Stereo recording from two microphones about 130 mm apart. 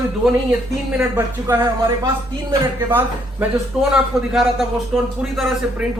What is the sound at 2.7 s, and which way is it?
Speech, 15° right (ahead or behind).